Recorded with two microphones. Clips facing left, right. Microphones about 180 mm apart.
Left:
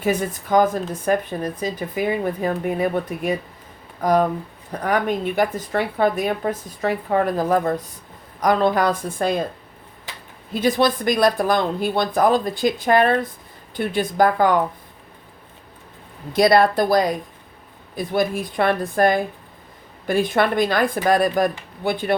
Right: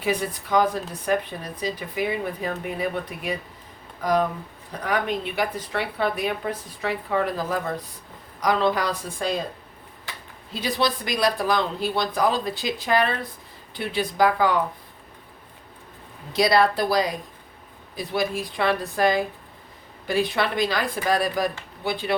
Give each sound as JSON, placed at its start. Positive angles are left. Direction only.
{"t": 0.0, "sound": "speech", "side_deg": 45}
{"t": 10.1, "sound": "a sound", "side_deg": 20}
{"t": 10.5, "sound": "speech", "side_deg": 50}
{"t": 16.3, "sound": "speech", "side_deg": 50}